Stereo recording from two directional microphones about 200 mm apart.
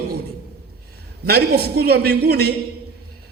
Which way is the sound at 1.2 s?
50° right (ahead or behind).